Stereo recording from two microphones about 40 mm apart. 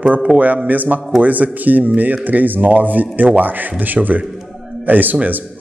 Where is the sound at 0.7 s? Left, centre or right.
Right.